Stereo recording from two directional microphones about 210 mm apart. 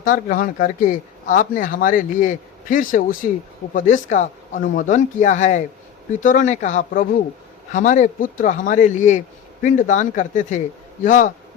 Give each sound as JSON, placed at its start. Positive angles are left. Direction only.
{"t": 0.0, "sound": "speech", "side_deg": 40}